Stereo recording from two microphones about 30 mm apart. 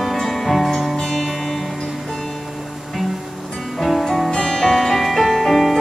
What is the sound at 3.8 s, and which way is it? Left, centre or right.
Music, centre.